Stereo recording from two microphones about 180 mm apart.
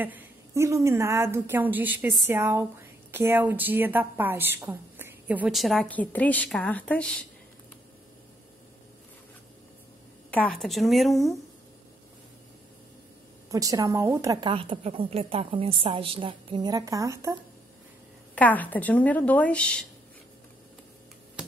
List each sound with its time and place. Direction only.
0.0 s a woman's voice: 10° right (ahead or behind); by 7.2 s 5° left (ahead or behind)
10.3 s a woman's voice: 5° left (ahead or behind)
13.5 s a woman's voice: 20° right (ahead or behind)
18.3 s speech: 10° left (ahead or behind)